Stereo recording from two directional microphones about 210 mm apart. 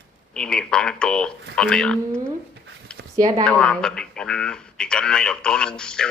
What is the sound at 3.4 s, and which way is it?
Speech, 5° left (ahead or behind).